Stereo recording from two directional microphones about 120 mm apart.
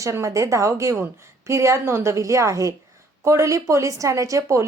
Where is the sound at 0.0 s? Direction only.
25° right (ahead or behind).